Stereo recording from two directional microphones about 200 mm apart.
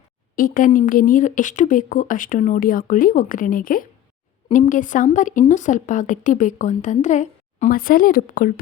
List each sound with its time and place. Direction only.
0.3 s speech: 45° left (ahead or behind)